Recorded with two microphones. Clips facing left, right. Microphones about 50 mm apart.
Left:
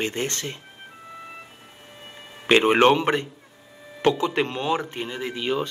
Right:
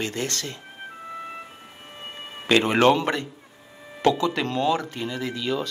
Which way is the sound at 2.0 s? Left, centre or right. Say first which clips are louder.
Right 6 dB; right.